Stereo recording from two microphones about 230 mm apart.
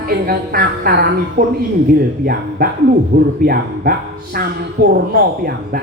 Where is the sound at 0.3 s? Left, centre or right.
Right.